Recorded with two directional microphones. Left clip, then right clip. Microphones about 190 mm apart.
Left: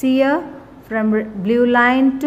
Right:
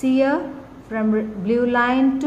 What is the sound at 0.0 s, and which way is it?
A woman's voice, 35° left (ahead or behind).